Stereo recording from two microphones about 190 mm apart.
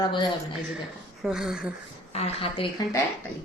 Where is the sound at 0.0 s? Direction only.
25° left (ahead or behind).